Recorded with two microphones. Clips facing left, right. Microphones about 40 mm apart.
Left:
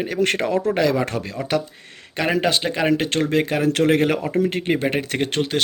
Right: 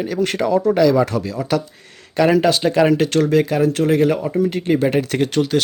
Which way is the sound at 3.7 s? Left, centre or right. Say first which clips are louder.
Right 2 dB; left.